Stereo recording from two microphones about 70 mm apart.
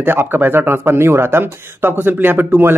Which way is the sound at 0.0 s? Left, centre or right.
Right.